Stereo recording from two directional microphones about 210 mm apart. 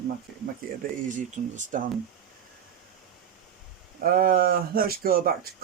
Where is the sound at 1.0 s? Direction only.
35° right (ahead or behind).